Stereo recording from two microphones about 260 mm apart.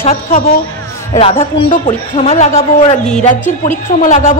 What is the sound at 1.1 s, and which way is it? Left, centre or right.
A woman's voice, left.